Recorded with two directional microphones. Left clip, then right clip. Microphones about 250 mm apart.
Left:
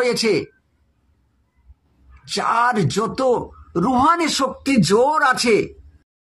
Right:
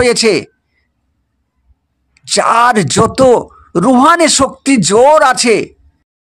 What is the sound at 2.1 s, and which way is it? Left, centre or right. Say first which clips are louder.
Speech: right 10 dB; right.